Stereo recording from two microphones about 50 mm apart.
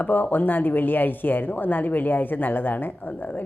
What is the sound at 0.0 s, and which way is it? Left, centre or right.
A woman's voice, left.